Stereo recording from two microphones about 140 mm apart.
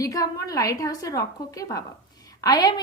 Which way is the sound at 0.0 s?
25° left (ahead or behind).